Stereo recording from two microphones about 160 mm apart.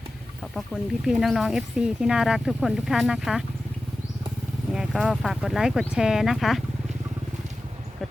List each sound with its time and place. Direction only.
0.5 s speech: centre (ahead or behind)
4.7 s speech: 5° right (ahead or behind)